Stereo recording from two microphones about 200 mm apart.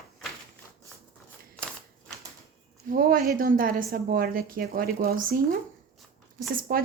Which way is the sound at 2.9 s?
45° right (ahead or behind).